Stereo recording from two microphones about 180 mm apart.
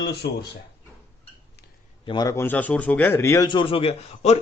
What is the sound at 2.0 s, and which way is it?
A man's voice, 20° left (ahead or behind).